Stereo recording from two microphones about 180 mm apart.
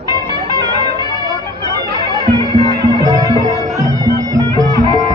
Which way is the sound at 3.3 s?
20° left (ahead or behind).